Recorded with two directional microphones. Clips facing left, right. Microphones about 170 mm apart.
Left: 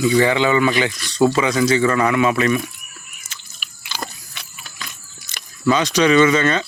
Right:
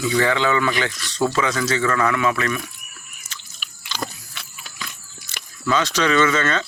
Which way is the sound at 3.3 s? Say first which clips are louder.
Right 1 dB; 10° left (ahead or behind).